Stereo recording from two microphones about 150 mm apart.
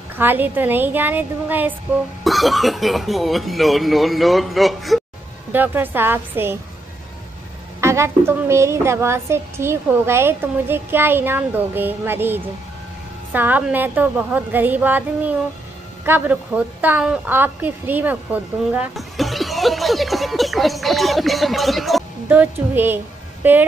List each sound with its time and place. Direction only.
0.2 s a woman's voice: 15° right (ahead or behind)
2.2 s speech: centre (ahead or behind)
5.5 s a woman's voice: 15° right (ahead or behind)
7.8 s a woman's voice: 20° right (ahead or behind)
18.9 s speech: centre (ahead or behind)
22.3 s a woman's voice: 15° right (ahead or behind)